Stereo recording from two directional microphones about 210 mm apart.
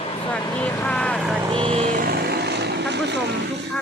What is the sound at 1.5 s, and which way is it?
Vehicle, 25° right (ahead or behind).